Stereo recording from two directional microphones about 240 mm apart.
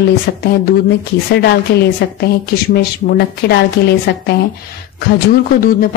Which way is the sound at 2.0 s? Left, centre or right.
Left.